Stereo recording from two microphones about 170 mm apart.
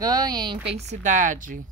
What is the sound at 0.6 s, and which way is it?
Speech, 40° right (ahead or behind).